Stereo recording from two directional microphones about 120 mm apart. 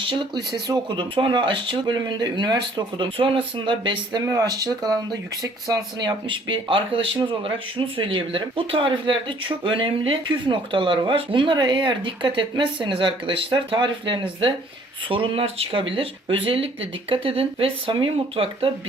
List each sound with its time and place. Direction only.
0.0 s speech: 45° right (ahead or behind)
4.3 s speech: 30° right (ahead or behind); by 18.7 s 50° right (ahead or behind)